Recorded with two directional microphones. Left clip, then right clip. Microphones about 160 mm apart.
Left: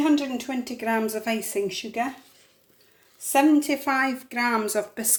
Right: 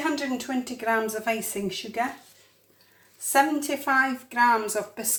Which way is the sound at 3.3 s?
45° left (ahead or behind).